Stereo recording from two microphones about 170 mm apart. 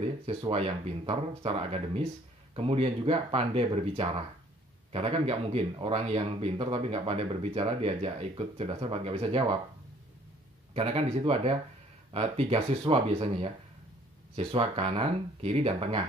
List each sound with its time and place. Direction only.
0.0 s speech: 35° right (ahead or behind)
10.7 s speech: 35° right (ahead or behind)